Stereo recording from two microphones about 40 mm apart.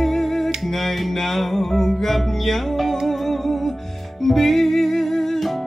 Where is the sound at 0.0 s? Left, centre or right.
Centre.